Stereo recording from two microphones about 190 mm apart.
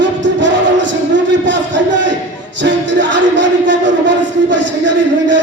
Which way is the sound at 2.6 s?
70° right (ahead or behind).